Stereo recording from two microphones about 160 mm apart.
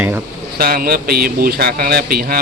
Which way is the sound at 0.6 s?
70° right (ahead or behind).